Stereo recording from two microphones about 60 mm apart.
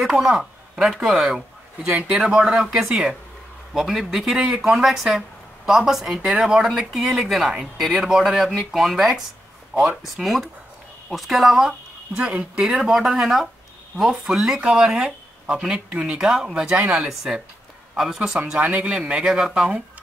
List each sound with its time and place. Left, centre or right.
0.0 s a man's voice: centre
9.7 s speech: right
10.1 s a man's voice: centre
12.2 s a man's voice: centre
18.6 s a man's voice: right
18.9 s speech: centre